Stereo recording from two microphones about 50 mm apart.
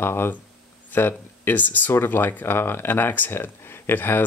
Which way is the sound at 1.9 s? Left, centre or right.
Left.